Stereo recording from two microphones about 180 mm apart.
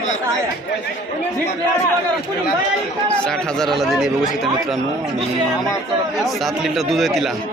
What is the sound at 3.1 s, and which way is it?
A man's voice, 5° left (ahead or behind).